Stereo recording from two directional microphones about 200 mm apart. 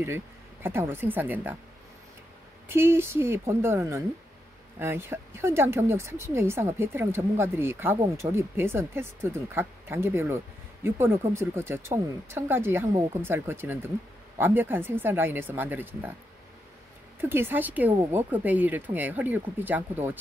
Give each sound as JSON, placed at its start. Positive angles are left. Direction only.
{"t": 0.0, "sound": "speech", "side_deg": -10}
{"t": 2.7, "sound": "speech", "side_deg": -10}
{"t": 17.2, "sound": "speech", "side_deg": -10}